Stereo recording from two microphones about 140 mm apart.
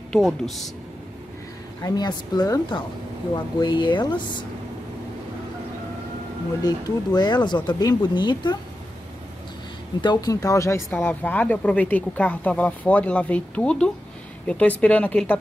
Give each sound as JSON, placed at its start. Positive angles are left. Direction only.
{"t": 0.1, "sound": "speech", "side_deg": 0}
{"t": 1.8, "sound": "speech", "side_deg": 25}
{"t": 6.6, "sound": "speech", "side_deg": 30}
{"t": 10.0, "sound": "speech", "side_deg": 25}